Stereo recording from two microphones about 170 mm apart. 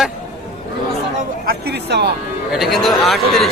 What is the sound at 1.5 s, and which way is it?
Speech, 75° right (ahead or behind).